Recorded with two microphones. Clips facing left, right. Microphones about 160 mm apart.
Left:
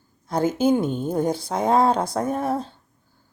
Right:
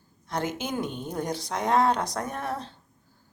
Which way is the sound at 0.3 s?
30° left (ahead or behind).